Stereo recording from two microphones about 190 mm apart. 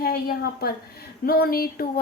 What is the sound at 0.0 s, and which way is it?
A woman's voice, 50° left (ahead or behind).